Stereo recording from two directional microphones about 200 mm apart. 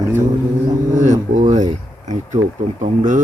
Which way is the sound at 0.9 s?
35° right (ahead or behind).